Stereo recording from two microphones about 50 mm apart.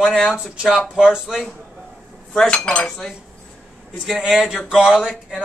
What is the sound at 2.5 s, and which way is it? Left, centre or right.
Cutlery, left.